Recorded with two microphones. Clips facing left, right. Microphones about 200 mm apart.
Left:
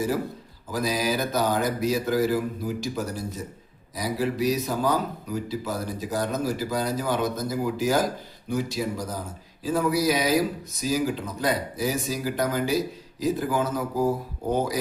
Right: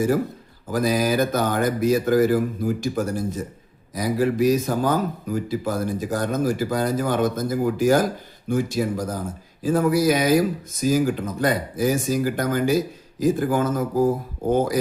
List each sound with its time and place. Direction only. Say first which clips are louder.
0.7 s speech: right 5 dB; 55° right (ahead or behind)